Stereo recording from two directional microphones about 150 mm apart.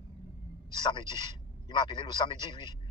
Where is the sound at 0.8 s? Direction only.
30° left (ahead or behind).